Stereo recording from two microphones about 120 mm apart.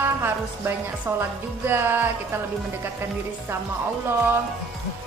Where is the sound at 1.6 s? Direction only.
20° right (ahead or behind).